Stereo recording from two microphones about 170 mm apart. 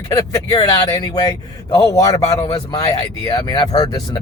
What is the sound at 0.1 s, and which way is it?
Speech, 20° left (ahead or behind).